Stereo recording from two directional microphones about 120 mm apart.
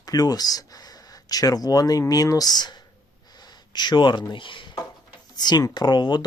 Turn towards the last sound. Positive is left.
turn(degrees=40)  # may be behind; listen again after turning